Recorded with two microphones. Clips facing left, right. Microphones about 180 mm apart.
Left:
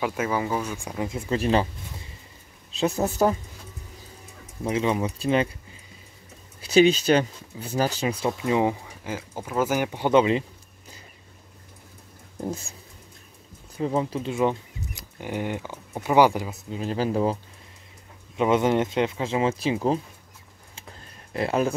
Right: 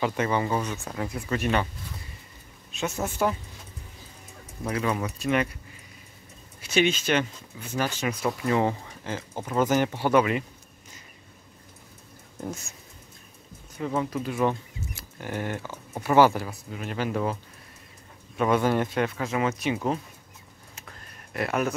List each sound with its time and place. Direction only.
0.0 s speech: 5° left (ahead or behind); by 1.7 s 30° left (ahead or behind)
2.7 s speech: 35° left (ahead or behind)
4.6 s speech: 20° left (ahead or behind)
6.6 s speech: 35° left (ahead or behind)
8.3 s speech: 15° left (ahead or behind)
12.4 s speech: 30° left (ahead or behind)
13.7 s speech: 30° left (ahead or behind)
18.3 s speech: 20° left (ahead or behind)
20.7 s a sound: 25° left (ahead or behind)